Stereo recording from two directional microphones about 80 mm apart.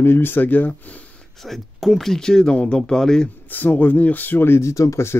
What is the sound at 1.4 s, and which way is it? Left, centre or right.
Speech, centre.